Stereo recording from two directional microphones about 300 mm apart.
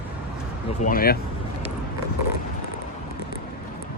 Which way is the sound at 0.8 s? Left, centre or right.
Left.